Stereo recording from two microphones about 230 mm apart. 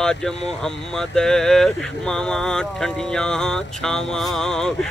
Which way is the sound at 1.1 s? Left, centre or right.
Centre.